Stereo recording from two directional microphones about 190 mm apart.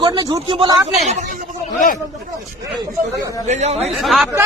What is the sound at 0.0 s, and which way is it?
Speech, 20° right (ahead or behind).